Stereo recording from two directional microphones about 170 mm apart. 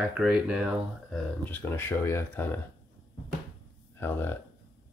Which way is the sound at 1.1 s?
10° left (ahead or behind).